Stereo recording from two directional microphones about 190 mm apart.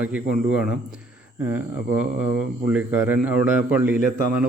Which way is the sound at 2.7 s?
10° right (ahead or behind).